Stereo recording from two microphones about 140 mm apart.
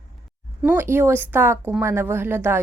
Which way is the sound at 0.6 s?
15° right (ahead or behind).